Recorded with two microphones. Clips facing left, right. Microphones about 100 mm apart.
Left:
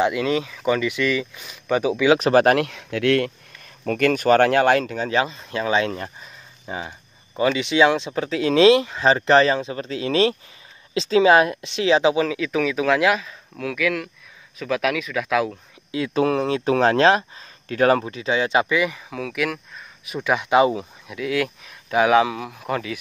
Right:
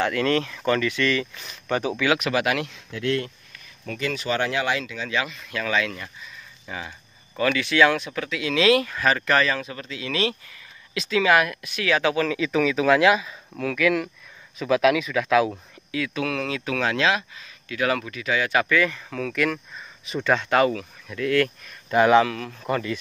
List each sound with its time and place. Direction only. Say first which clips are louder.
0.0 s speech: left 2 dB; 15° left (ahead or behind)
2.1 s speech: left 8 dB; 40° left (ahead or behind)
2.6 s speech: left 6 dB; 70° left (ahead or behind)
3.6 s speech: left 9 dB; 50° left (ahead or behind)
7.3 s speech: left 2 dB; 20° left (ahead or behind)
12.4 s speech: even; centre (ahead or behind)
15.9 s speech: left 6 dB; 30° left (ahead or behind); by 22.9 s 5° left (ahead or behind)